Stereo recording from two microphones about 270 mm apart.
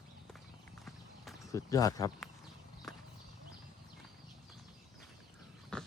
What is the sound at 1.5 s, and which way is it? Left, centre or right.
Speech, centre.